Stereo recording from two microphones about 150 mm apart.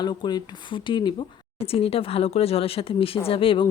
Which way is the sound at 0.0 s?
30° left (ahead or behind).